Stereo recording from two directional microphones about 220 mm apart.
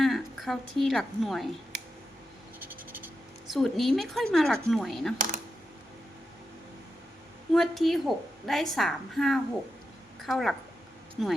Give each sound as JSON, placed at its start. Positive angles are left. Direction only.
{"t": 0.0, "sound": "a woman's voice", "side_deg": 0}
{"t": 2.6, "sound": "a sound", "side_deg": -10}
{"t": 3.5, "sound": "a woman's voice", "side_deg": 0}
{"t": 5.1, "sound": "speech", "side_deg": -35}
{"t": 7.5, "sound": "a woman's voice", "side_deg": 0}